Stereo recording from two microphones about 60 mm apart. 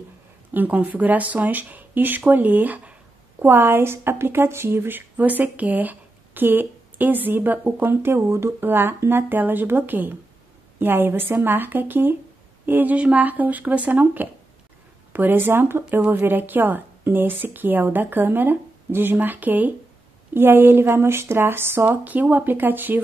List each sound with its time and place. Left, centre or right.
0.5 s speech: right
3.4 s a woman's voice: right
7.9 s a woman's voice: right
8.6 s a woman's voice: right
12.9 s a woman's voice: right
20.3 s a woman's voice: right